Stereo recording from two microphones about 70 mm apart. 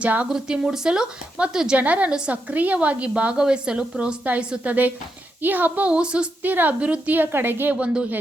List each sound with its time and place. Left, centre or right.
0.0 s a woman's voice: right
0.3 s a woman's voice: centre
6.4 s a woman's voice: right
7.8 s a woman's voice: centre